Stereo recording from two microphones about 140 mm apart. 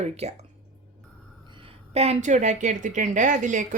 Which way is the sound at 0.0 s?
50° right (ahead or behind).